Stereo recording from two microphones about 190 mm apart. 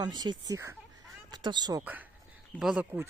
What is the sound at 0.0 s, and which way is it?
Speech, 20° right (ahead or behind).